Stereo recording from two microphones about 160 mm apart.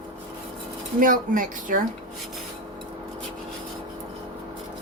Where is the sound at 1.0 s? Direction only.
55° right (ahead or behind).